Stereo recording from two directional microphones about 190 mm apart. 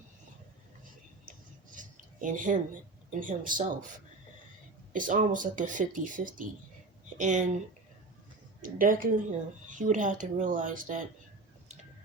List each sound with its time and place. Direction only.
1.7 s a sound: 45° right (ahead or behind)
3.1 s speech: 45° right (ahead or behind)
8.6 s speech: 45° right (ahead or behind)